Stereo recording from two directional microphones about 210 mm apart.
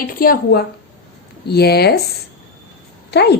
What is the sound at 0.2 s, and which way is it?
A woman's voice, 45° left (ahead or behind).